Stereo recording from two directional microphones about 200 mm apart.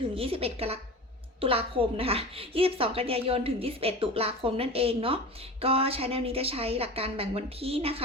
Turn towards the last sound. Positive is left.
turn(degrees=-30)  # may be behind; listen again after turning